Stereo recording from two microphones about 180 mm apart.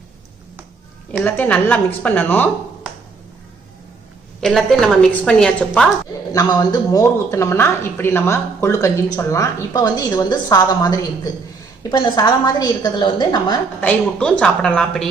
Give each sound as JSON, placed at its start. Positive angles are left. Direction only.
{"t": 1.2, "sound": "speech", "side_deg": 10}
{"t": 4.4, "sound": "a woman's voice", "side_deg": 0}
{"t": 6.3, "sound": "a woman's voice", "side_deg": 20}
{"t": 13.8, "sound": "a woman's voice", "side_deg": 5}